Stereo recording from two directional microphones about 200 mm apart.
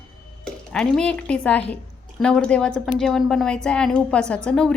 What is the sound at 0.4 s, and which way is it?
A woman's voice, 5° left (ahead or behind).